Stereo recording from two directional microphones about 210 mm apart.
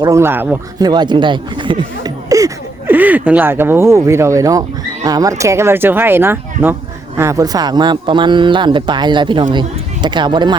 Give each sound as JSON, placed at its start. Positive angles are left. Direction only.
{"t": 0.0, "sound": "speech", "side_deg": -15}
{"t": 0.9, "sound": "speech", "side_deg": -20}